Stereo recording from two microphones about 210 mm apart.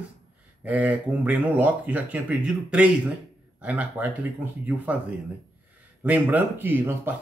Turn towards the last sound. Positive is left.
turn(degrees=-10)  # may be behind; listen again after turning